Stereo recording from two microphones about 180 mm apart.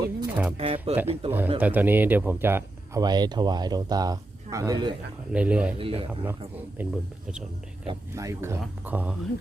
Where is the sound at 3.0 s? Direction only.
25° right (ahead or behind).